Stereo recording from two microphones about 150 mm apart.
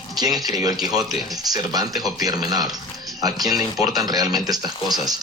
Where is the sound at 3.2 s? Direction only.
25° right (ahead or behind).